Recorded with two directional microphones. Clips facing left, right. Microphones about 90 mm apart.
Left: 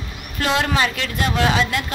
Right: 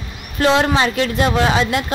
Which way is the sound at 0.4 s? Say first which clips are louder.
Right 5 dB; 25° right (ahead or behind).